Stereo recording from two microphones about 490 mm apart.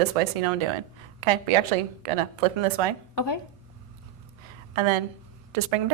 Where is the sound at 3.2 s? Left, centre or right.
Left.